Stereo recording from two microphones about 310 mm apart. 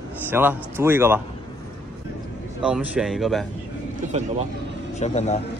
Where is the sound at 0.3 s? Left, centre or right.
Centre.